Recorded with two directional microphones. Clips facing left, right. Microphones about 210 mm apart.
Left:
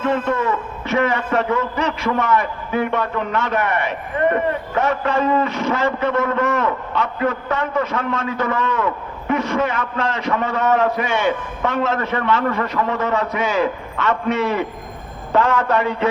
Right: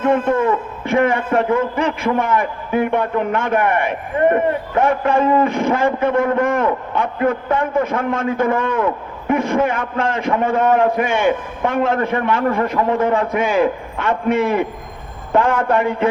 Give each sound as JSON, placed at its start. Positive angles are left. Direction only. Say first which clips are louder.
{"t": 0.0, "sound": "a man's voice", "louder": "right 4 dB", "side_deg": -50}